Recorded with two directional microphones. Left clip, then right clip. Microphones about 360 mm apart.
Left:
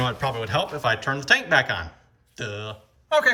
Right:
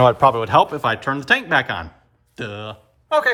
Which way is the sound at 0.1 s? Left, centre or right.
Centre.